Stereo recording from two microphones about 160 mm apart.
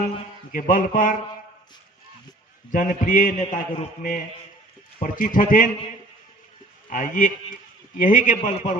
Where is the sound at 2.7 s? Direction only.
55° left (ahead or behind).